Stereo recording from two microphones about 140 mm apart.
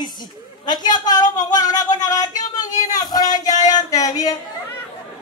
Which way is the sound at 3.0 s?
30° left (ahead or behind).